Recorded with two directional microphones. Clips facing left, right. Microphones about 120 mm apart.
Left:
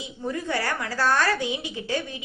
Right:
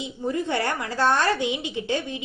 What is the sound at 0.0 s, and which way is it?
A woman's voice, 25° right (ahead or behind).